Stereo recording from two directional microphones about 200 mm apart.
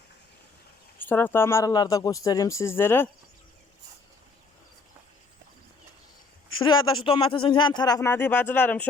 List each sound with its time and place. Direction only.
0.9 s speech: 10° left (ahead or behind)
6.6 s speech: 25° left (ahead or behind)